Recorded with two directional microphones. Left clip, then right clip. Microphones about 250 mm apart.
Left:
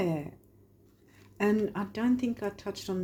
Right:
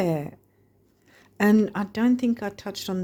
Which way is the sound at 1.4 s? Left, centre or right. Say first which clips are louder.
Right 6 dB; right.